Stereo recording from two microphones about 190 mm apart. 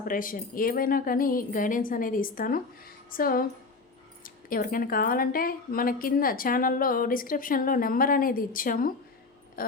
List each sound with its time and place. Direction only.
0.1 s speech: 45° left (ahead or behind)